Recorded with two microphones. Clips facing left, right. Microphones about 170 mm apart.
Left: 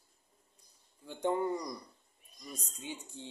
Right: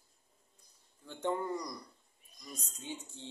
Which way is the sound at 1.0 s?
15° left (ahead or behind).